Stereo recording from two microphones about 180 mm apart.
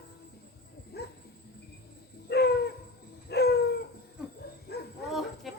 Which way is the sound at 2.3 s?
65° left (ahead or behind).